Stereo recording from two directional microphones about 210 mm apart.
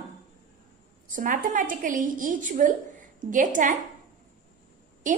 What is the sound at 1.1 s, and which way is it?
A woman's voice, 40° right (ahead or behind).